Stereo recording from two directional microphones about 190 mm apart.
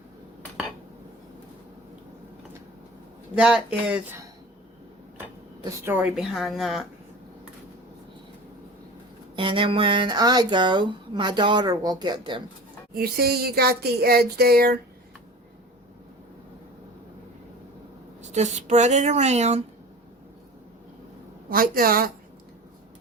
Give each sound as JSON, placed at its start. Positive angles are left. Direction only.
{"t": 3.3, "sound": "speech", "side_deg": -5}
{"t": 5.8, "sound": "speech", "side_deg": -10}
{"t": 9.3, "sound": "speech", "side_deg": -25}
{"t": 12.9, "sound": "a sound", "side_deg": -55}
{"t": 18.2, "sound": "speech", "side_deg": -35}
{"t": 21.5, "sound": "a sound", "side_deg": -50}